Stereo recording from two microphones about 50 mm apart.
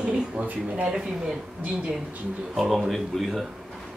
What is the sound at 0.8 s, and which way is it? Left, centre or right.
Speech, centre.